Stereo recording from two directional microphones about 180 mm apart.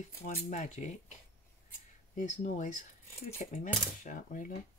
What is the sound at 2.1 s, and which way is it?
Speech, 45° left (ahead or behind).